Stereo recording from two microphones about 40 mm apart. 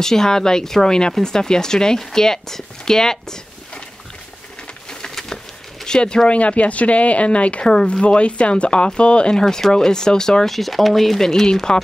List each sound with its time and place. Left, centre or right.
0.0 s speech: centre
4.8 s a sound: centre
5.9 s speech: centre
6.2 s speech: left
9.4 s speech: centre
10.5 s speech: centre